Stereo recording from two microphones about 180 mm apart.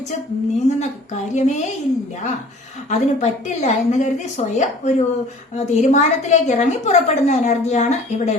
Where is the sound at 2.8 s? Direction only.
40° left (ahead or behind).